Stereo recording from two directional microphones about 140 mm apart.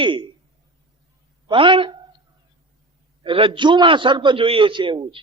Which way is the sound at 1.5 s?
35° right (ahead or behind).